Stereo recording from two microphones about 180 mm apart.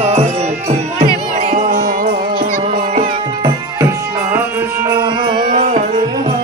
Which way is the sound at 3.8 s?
15° right (ahead or behind).